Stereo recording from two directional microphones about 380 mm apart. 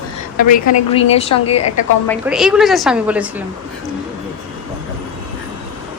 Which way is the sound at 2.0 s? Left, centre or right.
Centre.